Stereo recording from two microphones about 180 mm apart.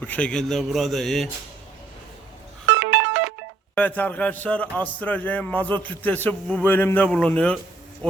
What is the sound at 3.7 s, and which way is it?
A man's voice, 10° left (ahead or behind).